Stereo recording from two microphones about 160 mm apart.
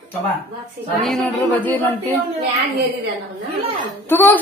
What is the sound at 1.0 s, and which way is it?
A woman's voice, 5° left (ahead or behind).